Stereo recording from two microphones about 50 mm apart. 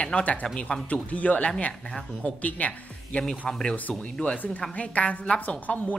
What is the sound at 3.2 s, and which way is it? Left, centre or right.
Speech, centre.